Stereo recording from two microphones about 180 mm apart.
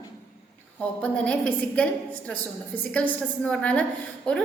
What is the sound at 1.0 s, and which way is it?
Speech, 5° left (ahead or behind).